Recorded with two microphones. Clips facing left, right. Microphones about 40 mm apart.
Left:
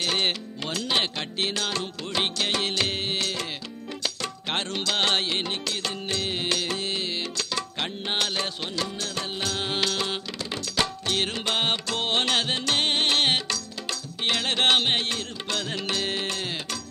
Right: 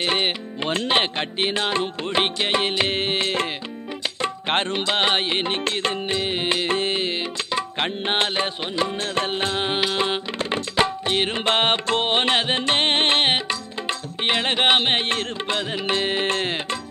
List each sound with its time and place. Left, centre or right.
0.0 s music: right
9.2 s tabla: right
14.2 s music: right